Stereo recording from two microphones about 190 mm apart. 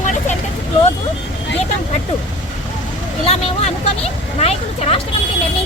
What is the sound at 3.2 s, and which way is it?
A woman's voice, 30° left (ahead or behind).